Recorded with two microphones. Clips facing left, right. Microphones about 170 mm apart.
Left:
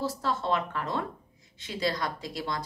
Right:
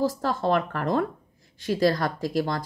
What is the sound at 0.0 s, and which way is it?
Speech, 50° right (ahead or behind).